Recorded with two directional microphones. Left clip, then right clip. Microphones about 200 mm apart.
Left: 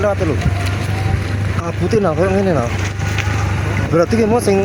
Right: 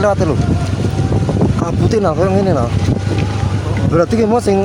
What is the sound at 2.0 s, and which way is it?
Speech, 5° right (ahead or behind).